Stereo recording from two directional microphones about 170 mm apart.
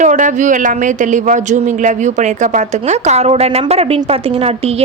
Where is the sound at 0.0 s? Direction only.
45° right (ahead or behind).